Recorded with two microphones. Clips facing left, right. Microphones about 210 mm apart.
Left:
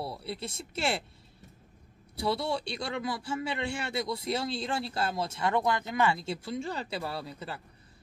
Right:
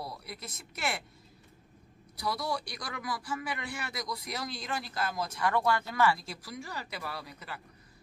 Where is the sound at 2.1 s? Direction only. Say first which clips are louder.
Left 4 dB; 25° left (ahead or behind).